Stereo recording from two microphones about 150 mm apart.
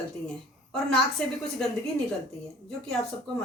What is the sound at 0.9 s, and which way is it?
Speech, 5° left (ahead or behind).